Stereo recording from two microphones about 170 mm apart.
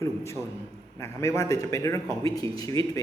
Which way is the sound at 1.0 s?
20° left (ahead or behind).